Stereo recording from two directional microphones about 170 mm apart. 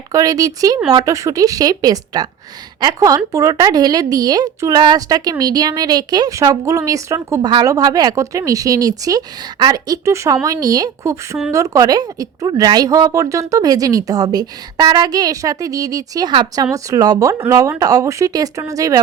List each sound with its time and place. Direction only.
0.1 s a woman's voice: 20° right (ahead or behind)